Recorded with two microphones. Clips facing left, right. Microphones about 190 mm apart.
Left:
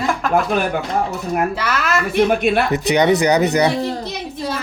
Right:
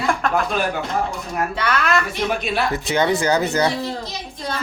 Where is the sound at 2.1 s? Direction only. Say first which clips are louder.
Left 7 dB; 55° left (ahead or behind).